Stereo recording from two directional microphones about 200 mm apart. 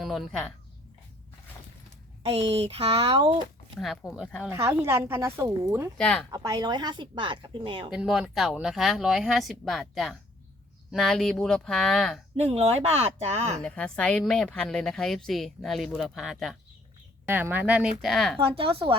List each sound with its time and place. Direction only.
0.0 s speech: centre (ahead or behind)
2.2 s a woman's voice: 30° right (ahead or behind)
3.8 s a woman's voice: centre (ahead or behind)
4.5 s a woman's voice: 10° right (ahead or behind)
6.0 s a woman's voice: 5° left (ahead or behind)
6.3 s a woman's voice: 20° right (ahead or behind)
7.9 s a woman's voice: centre (ahead or behind)
12.4 s speech: 30° right (ahead or behind)
13.6 s a woman's voice: 5° left (ahead or behind)
18.3 s a woman's voice: 25° right (ahead or behind)